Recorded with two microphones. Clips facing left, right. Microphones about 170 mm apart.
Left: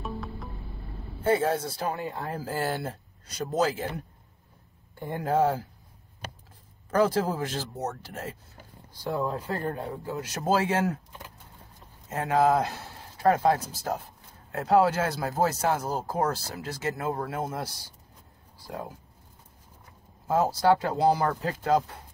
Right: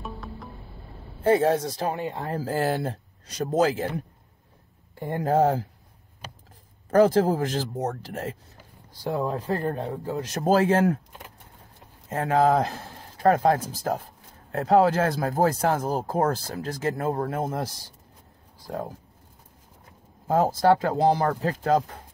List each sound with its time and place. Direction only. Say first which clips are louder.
0.0 s music: left 1 dB; centre (ahead or behind)
1.4 s speech: right 4 dB; 40° right (ahead or behind)
2.0 s speech: right 3 dB; 20° right (ahead or behind)
2.2 s speech: right 5 dB; 45° right (ahead or behind)
5.1 s speech: right 3 dB; 45° right (ahead or behind)
6.9 s speech: right 6 dB; 45° right (ahead or behind)
12.1 s speech: right 2 dB; 50° right (ahead or behind)
18.7 s speech: right 5 dB; 40° right (ahead or behind)
20.2 s speech: right 3 dB; 50° right (ahead or behind)